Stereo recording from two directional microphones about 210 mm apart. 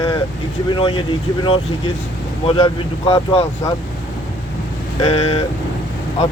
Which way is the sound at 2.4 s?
25° left (ahead or behind).